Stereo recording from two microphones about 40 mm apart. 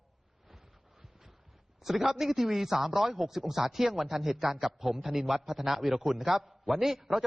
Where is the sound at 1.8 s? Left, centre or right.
Centre.